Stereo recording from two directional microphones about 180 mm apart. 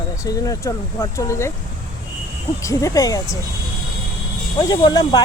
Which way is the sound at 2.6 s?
15° left (ahead or behind).